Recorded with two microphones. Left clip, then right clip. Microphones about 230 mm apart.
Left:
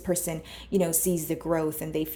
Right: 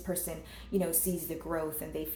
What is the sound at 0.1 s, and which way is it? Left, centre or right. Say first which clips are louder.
Speech: left 9 dB; left.